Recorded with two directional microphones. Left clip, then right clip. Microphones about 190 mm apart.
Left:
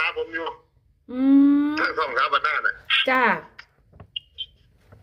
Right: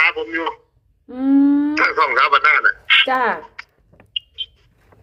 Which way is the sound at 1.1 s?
15° left (ahead or behind).